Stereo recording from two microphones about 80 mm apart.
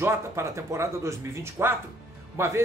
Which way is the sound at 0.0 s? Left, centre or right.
Right.